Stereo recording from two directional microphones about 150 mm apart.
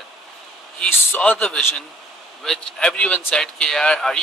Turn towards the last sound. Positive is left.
turn(degrees=0)  # may be behind; listen again after turning